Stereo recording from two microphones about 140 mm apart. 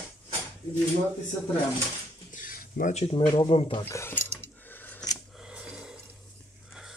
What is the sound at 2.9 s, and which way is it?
Speech, 45° left (ahead or behind).